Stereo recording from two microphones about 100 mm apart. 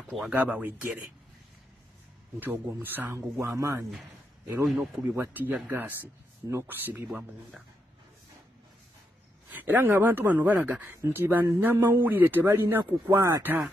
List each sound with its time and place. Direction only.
0.3 s speech: 15° right (ahead or behind)
2.5 s speech: 20° right (ahead or behind)
3.2 s speech: 30° right (ahead or behind)
4.6 s speech: centre (ahead or behind)
5.0 s speech: 20° right (ahead or behind)
9.5 s speech: 20° right (ahead or behind)